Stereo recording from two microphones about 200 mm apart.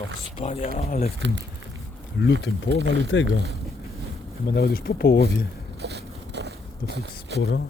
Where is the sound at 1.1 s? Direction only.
65° right (ahead or behind).